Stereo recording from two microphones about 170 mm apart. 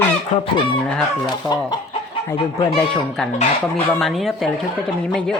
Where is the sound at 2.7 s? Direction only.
5° left (ahead or behind).